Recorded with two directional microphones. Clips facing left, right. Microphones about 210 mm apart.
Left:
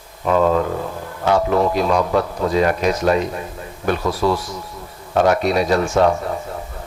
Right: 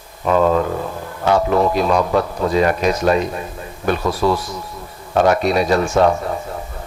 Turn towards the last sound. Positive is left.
turn(degrees=-25)  # may be behind; listen again after turning